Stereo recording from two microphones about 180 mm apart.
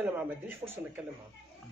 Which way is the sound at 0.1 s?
10° right (ahead or behind).